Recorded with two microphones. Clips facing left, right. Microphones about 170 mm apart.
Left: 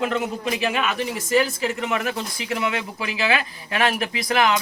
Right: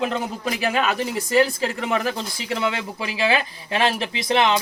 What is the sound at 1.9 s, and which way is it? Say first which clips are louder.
Speech: right 1 dB; 30° right (ahead or behind).